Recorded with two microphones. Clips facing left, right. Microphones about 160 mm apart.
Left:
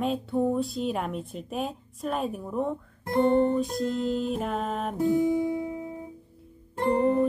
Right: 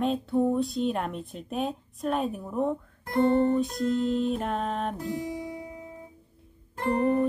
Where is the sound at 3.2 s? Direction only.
20° left (ahead or behind).